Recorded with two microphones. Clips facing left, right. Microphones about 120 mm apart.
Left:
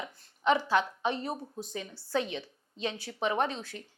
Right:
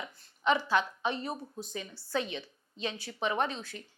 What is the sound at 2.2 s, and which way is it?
Speech, 55° left (ahead or behind).